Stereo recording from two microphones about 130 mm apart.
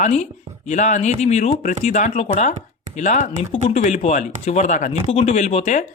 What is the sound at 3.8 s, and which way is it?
Speech, 65° left (ahead or behind).